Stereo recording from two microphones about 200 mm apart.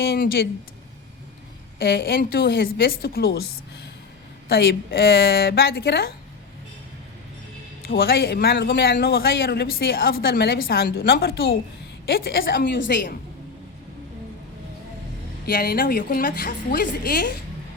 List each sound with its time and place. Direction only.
0.0 s speech: 50° left (ahead or behind)
1.8 s speech: 50° left (ahead or behind)
4.4 s speech: 50° left (ahead or behind)
7.9 s a woman's voice: 50° left (ahead or behind)
15.4 s speech: 50° left (ahead or behind)